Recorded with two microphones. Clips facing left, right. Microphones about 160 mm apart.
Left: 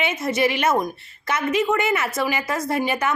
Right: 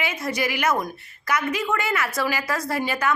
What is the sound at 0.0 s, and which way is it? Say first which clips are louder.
A woman's voice: left 5 dB; 25° left (ahead or behind).